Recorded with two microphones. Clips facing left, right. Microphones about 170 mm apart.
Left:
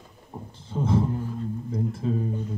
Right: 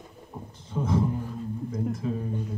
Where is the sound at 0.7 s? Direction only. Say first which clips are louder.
Left 2 dB; 30° left (ahead or behind).